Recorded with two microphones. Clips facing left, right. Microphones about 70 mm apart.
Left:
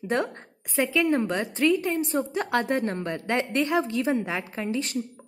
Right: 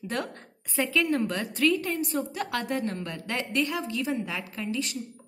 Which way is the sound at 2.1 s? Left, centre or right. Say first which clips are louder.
Left 4 dB; left.